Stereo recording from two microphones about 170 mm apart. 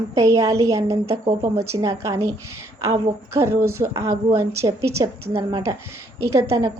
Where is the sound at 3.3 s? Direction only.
15° right (ahead or behind).